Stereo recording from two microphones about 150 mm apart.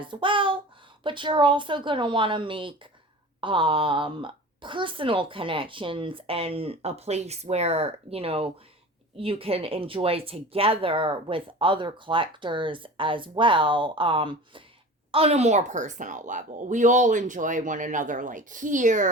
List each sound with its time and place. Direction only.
0.0 s speech: 35° right (ahead or behind); by 19.1 s 55° right (ahead or behind)